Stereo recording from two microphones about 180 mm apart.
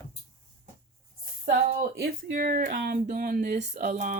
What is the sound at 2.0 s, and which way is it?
Speech, 50° right (ahead or behind).